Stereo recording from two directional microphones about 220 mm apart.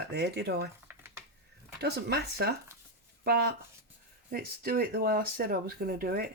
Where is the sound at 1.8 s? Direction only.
50° right (ahead or behind).